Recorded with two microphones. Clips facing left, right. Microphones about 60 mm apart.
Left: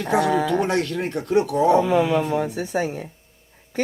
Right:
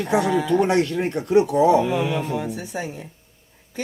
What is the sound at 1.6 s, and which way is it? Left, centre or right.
A woman's voice, left.